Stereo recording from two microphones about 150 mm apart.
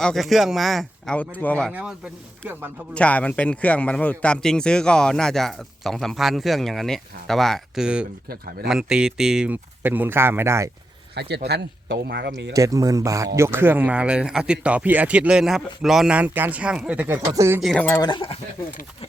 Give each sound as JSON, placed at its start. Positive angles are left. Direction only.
{"t": 0.0, "sound": "speech", "side_deg": 0}
{"t": 1.7, "sound": "speech", "side_deg": -5}
{"t": 2.9, "sound": "speech", "side_deg": 10}
{"t": 11.1, "sound": "speech", "side_deg": -90}
{"t": 12.5, "sound": "speech", "side_deg": -25}
{"t": 17.6, "sound": "speech", "side_deg": 0}
{"t": 17.8, "sound": "speech", "side_deg": 20}
{"t": 18.1, "sound": "speech", "side_deg": 35}